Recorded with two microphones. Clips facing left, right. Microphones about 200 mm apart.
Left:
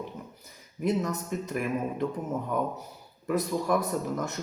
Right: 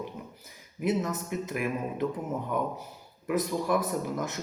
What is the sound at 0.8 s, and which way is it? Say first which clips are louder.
A man's voice: left 1 dB; 5° right (ahead or behind).